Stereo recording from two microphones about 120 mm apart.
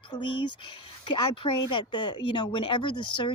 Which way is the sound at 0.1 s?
45° left (ahead or behind).